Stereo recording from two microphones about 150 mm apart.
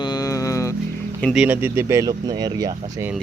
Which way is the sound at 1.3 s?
10° right (ahead or behind).